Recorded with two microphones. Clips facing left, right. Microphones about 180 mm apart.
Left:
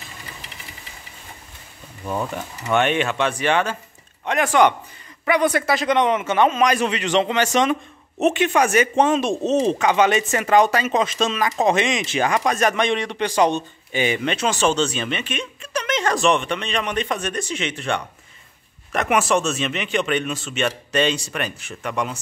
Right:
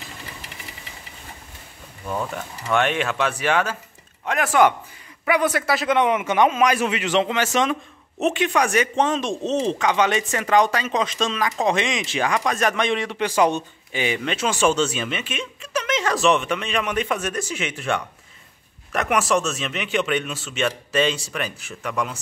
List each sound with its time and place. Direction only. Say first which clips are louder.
2.0 s speech: left 2 dB; 5° left (ahead or behind)